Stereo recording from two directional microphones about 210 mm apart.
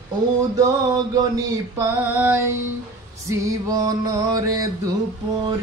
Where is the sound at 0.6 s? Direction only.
20° right (ahead or behind).